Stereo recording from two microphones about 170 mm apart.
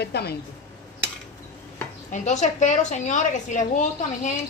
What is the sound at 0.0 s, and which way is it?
Speech, 75° left (ahead or behind).